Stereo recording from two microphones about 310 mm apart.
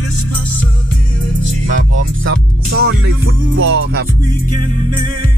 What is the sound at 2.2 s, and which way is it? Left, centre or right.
Music, right.